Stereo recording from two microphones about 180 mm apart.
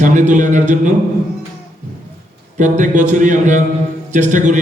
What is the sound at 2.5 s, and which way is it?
A man's voice, 45° right (ahead or behind).